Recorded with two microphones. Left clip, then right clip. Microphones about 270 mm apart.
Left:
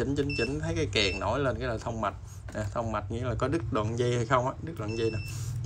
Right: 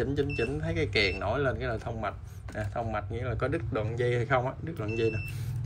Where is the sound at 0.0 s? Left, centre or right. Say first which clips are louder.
Even; centre.